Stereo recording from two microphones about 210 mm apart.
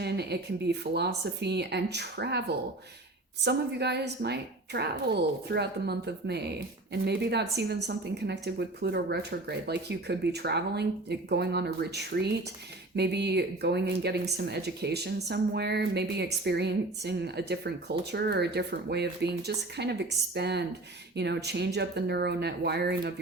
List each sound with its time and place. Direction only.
0.0 s speech: 50° right (ahead or behind)
3.4 s speech: 50° right (ahead or behind)